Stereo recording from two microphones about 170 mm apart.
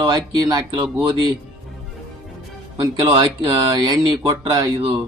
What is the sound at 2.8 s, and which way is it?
A man's voice, 20° right (ahead or behind).